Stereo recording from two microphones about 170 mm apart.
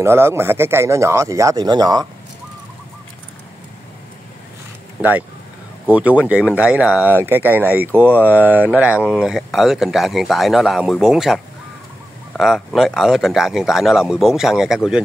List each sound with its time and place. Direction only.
0.0 s speech: 15° right (ahead or behind)
5.9 s speech: 10° right (ahead or behind)